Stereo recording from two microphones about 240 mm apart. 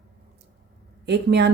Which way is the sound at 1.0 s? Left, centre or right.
Right.